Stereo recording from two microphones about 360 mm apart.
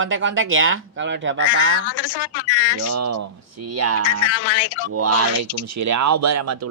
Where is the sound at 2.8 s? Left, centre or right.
Right.